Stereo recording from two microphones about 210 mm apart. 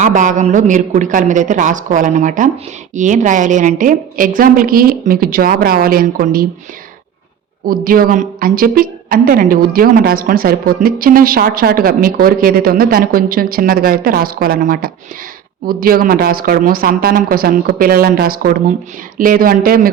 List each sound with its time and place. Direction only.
0.0 s a woman's voice: 35° right (ahead or behind)
7.7 s a woman's voice: 45° right (ahead or behind)